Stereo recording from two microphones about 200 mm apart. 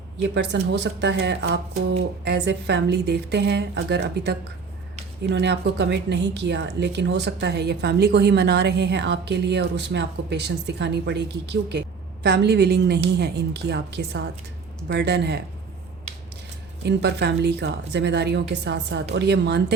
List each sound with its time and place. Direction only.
0.2 s a woman's voice: 60° right (ahead or behind)
16.8 s a woman's voice: 55° right (ahead or behind)